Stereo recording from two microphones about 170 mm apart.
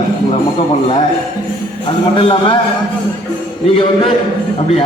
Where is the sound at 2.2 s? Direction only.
30° left (ahead or behind).